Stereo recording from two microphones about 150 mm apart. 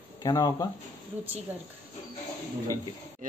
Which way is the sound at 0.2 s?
25° left (ahead or behind).